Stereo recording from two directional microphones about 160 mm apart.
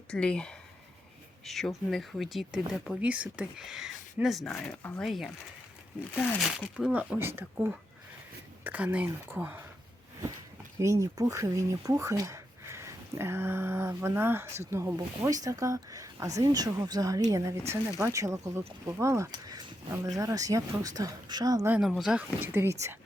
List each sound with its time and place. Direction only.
0.1 s speech: 5° left (ahead or behind)
6.6 s speech: 5° right (ahead or behind)
10.8 s speech: 20° right (ahead or behind)
21.8 s speech: centre (ahead or behind)
22.5 s speech: 15° right (ahead or behind)